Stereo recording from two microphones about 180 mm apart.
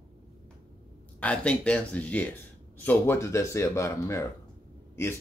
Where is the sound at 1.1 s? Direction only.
5° left (ahead or behind).